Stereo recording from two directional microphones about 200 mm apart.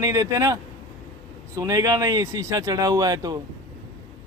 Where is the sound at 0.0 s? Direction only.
15° right (ahead or behind).